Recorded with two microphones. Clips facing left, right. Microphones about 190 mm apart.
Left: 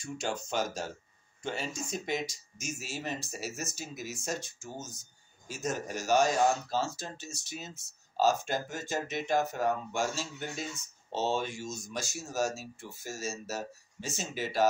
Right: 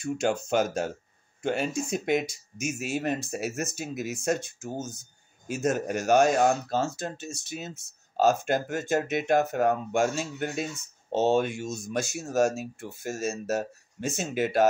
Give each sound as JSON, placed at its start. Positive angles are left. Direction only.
{"t": 0.0, "sound": "speech", "side_deg": -55}